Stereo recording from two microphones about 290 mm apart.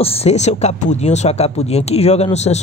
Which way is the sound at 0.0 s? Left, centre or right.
Left.